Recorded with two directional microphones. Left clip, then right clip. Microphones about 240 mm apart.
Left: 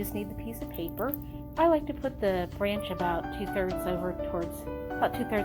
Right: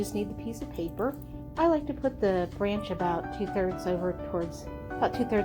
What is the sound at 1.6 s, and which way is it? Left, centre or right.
Speech, left.